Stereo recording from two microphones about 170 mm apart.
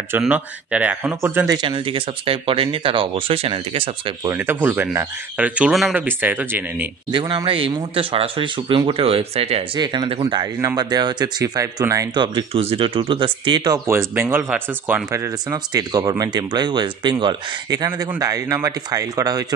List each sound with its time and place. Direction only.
0.2 s speech: 10° right (ahead or behind)
1.6 s speech: 30° right (ahead or behind)
4.3 s speech: 10° right (ahead or behind)
7.1 s speech: 25° right (ahead or behind)
10.4 s speech: 20° right (ahead or behind)
13.8 s speech: 15° right (ahead or behind)